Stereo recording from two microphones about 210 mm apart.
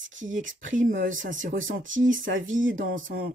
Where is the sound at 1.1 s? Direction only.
65° right (ahead or behind).